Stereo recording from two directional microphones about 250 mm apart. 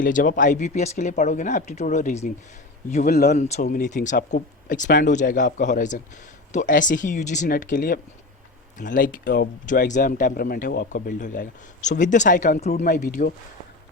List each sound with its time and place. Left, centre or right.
0.0 s speech: left